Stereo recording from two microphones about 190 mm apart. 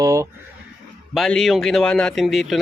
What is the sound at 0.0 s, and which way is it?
Speech, 15° right (ahead or behind).